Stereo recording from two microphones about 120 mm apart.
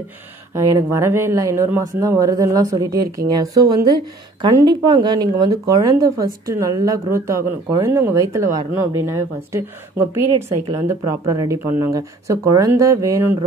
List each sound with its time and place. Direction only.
0.6 s speech: 25° right (ahead or behind)